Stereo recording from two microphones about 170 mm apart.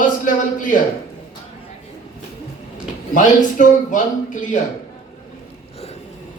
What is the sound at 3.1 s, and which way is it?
A man's voice, 50° left (ahead or behind).